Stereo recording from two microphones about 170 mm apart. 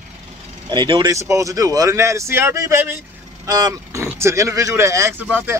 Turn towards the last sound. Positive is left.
turn(degrees=-10)  # may be behind; listen again after turning